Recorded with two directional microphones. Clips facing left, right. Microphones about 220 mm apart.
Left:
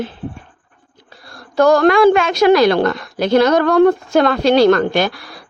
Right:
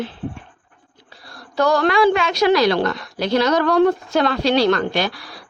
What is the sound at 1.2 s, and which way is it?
A woman's voice, 50° left (ahead or behind).